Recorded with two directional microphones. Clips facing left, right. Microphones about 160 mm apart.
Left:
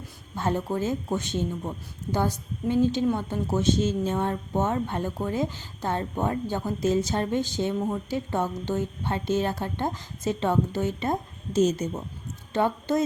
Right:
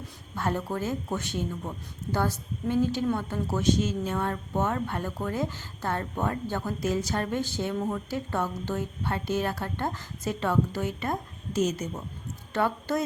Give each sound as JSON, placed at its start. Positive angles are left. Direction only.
{"t": 0.3, "sound": "a woman's voice", "side_deg": 20}